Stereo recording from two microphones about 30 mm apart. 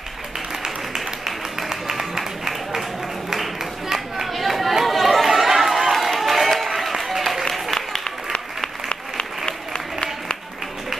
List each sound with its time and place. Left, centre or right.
0.9 s a sound: centre
4.3 s chatter: centre
8.0 s applause: left